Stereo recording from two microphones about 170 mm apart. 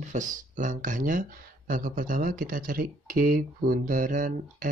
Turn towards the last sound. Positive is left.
turn(degrees=-50)  # may be behind; listen again after turning